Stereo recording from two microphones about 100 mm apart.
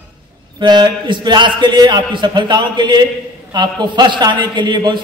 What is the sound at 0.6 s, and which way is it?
A man's voice, 45° right (ahead or behind).